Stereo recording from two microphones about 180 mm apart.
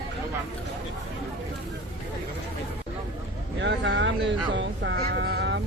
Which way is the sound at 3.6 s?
85° right.